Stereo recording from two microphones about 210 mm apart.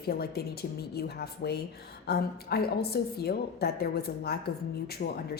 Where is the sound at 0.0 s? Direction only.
50° left (ahead or behind).